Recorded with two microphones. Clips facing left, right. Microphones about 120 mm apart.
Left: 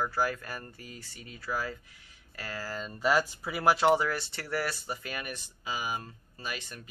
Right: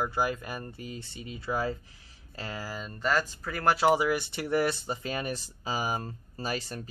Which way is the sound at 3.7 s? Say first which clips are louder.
Right 1 dB; 5° right (ahead or behind).